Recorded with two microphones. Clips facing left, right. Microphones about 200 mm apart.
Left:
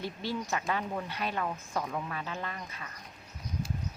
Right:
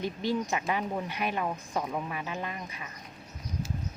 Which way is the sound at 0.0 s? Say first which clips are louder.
Right 5 dB; 15° right (ahead or behind).